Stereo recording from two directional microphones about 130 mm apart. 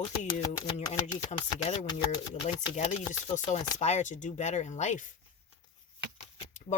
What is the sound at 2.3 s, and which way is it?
Speech, 65° left (ahead or behind).